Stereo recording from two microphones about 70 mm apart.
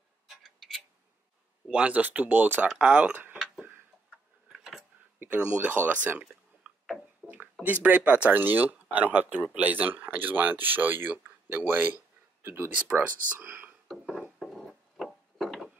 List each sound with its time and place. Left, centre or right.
0.3 s tick-tock: centre
1.7 s speech: centre
2.8 s speech: centre
4.5 s a sound: centre
5.2 s speech: right
6.7 s a sound: centre
7.6 s speech: right
14.4 s wood: centre